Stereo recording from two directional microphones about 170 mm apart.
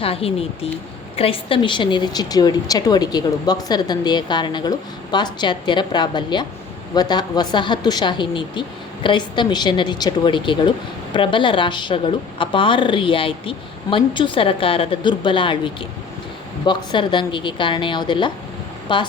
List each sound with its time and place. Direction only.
0.0 s a woman's voice: 35° left (ahead or behind)